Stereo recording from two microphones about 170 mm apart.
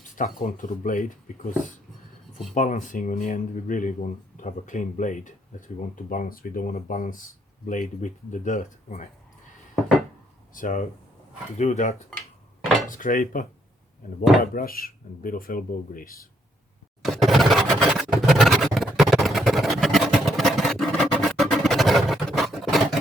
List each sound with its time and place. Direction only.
0.2 s speech: 50° left (ahead or behind)
10.5 s speech: 50° left (ahead or behind)
11.5 s cutlery: 40° left (ahead or behind)
12.9 s speech: 50° left (ahead or behind)
14.5 s speech: 60° left (ahead or behind)
17.0 s a sound: centre (ahead or behind)